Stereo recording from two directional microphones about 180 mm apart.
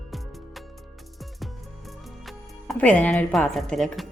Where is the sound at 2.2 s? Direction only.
5° left (ahead or behind).